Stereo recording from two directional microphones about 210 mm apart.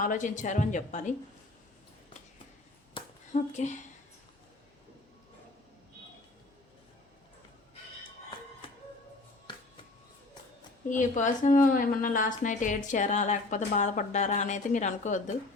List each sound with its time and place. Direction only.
0.0 s a woman's voice: 40° left (ahead or behind)
2.9 s a sound: 35° left (ahead or behind)
8.6 s music: 25° left (ahead or behind)
10.8 s a woman's voice: 35° left (ahead or behind)